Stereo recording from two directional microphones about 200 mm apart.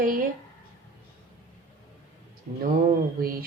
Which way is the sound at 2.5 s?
45° right (ahead or behind).